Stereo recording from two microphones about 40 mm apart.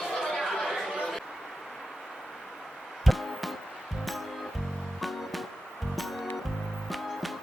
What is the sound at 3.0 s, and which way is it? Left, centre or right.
Music, centre.